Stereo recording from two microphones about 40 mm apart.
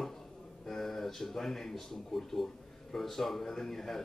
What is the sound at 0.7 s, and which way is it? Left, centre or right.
A man's voice, centre.